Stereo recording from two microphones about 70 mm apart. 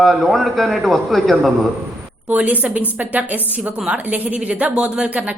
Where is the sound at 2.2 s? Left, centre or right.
Right.